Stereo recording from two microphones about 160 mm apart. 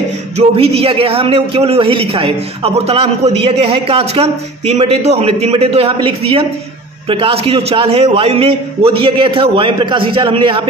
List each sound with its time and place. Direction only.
0.4 s a man's voice: 40° right (ahead or behind)